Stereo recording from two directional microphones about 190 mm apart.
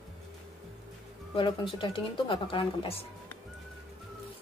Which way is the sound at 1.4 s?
25° left (ahead or behind).